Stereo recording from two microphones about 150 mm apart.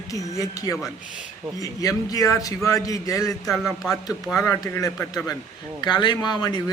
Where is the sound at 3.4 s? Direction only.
Centre (ahead or behind).